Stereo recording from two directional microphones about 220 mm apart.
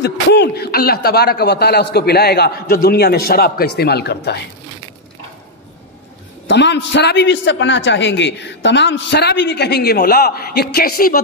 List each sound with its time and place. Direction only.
0.0 s a man's voice: 50° left (ahead or behind)
6.5 s a man's voice: 50° left (ahead or behind)